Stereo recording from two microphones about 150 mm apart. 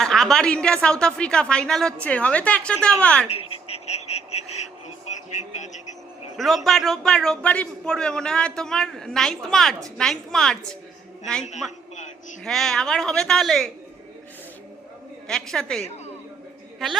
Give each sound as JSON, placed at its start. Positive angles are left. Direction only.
{"t": 0.0, "sound": "a man's voice", "side_deg": 5}
{"t": 3.2, "sound": "a sound", "side_deg": 45}
{"t": 5.0, "sound": "vehicle", "side_deg": 50}
{"t": 6.3, "sound": "a man's voice", "side_deg": 0}
{"t": 12.5, "sound": "a man's voice", "side_deg": 0}
{"t": 15.3, "sound": "a man's voice", "side_deg": 5}